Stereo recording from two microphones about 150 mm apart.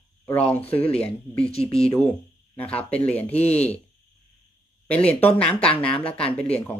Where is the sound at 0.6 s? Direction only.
40° left (ahead or behind).